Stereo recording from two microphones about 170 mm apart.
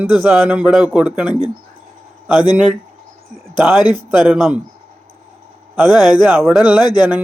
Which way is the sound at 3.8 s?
25° left (ahead or behind).